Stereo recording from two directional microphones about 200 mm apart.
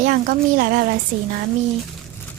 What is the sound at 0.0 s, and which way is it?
Speech, 45° right (ahead or behind).